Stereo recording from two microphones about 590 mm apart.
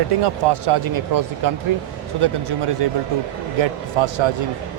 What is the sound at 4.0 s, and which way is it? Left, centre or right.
Speech, right.